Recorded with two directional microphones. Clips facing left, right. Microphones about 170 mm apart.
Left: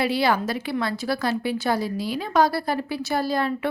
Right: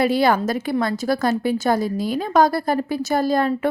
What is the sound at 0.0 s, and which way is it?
A woman's voice, 45° right (ahead or behind).